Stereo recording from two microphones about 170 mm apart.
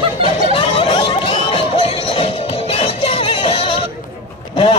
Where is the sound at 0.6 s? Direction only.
30° left (ahead or behind).